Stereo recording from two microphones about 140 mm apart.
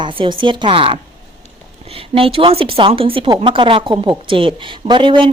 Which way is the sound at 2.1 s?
40° right (ahead or behind).